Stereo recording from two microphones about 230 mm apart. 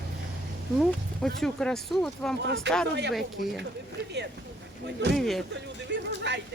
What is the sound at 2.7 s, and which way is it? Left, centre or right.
Speech, right.